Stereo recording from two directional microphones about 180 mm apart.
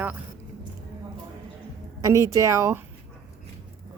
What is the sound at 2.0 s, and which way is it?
Speech, 15° right (ahead or behind).